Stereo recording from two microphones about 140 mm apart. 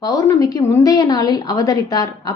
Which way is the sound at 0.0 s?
25° left (ahead or behind).